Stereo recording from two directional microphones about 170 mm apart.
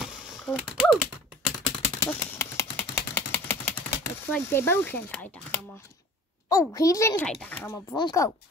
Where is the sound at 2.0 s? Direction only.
15° left (ahead or behind).